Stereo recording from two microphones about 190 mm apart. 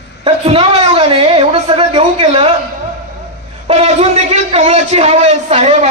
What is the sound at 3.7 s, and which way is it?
A man's voice, 35° right (ahead or behind).